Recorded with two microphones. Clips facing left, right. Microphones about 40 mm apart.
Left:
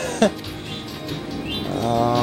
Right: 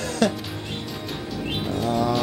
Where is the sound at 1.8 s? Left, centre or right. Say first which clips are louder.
Left 4 dB; left.